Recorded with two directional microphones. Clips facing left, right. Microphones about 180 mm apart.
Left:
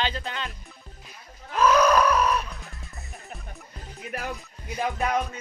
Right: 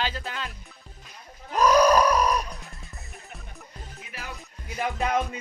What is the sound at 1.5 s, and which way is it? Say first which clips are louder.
Groan: right 1 dB; 35° right (ahead or behind).